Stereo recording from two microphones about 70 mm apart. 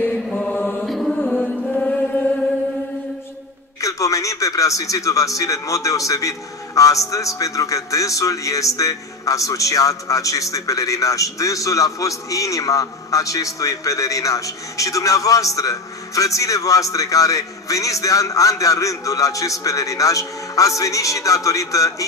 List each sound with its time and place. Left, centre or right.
0.3 s mantra: left
0.8 s music: centre
1.2 s music: centre
3.8 s a man's voice: left